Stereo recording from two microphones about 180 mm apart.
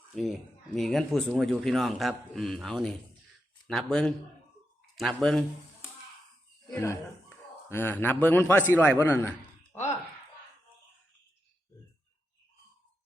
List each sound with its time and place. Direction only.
0.1 s speech: centre (ahead or behind)
6.7 s a man's voice: 15° left (ahead or behind)
9.7 s a sound: 10° left (ahead or behind)